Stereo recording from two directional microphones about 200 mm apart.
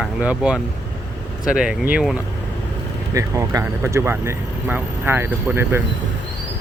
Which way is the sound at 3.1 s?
15° right (ahead or behind).